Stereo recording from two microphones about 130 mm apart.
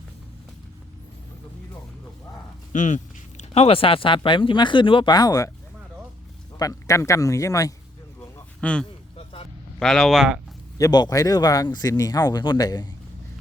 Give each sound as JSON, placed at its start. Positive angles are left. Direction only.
{"t": 2.7, "sound": "speech", "side_deg": 70}
{"t": 6.6, "sound": "speech", "side_deg": 25}
{"t": 8.6, "sound": "speech", "side_deg": 10}
{"t": 9.1, "sound": "vehicle", "side_deg": 45}
{"t": 9.8, "sound": "speech", "side_deg": 5}
{"t": 10.8, "sound": "speech", "side_deg": 30}